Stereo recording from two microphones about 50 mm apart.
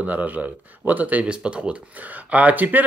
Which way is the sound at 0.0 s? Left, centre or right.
Right.